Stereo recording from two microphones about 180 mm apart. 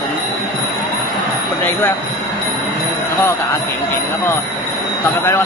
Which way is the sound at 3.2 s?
15° left (ahead or behind).